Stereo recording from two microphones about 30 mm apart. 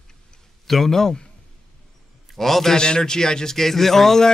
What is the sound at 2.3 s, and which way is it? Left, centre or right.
Speech, centre.